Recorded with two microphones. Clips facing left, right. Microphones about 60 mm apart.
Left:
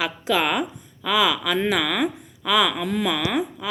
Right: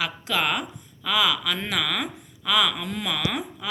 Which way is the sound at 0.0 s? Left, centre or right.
Centre.